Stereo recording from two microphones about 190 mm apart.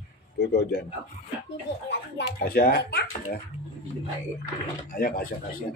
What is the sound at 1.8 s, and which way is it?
Speech, 60° left (ahead or behind).